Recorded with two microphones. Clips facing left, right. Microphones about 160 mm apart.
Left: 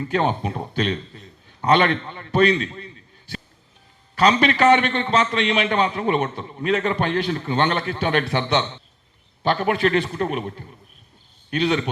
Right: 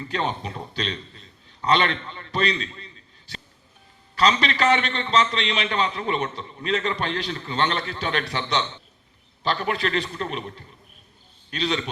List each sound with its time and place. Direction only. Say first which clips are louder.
0.1 s a man's voice: left 5 dB; 50° left (ahead or behind)
9.6 s a man's voice: left 6 dB; 50° left (ahead or behind)
11.5 s a man's voice: left 5 dB; 55° left (ahead or behind)